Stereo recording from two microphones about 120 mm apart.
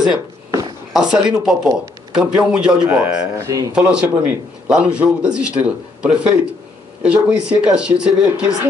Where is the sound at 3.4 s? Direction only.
30° right (ahead or behind).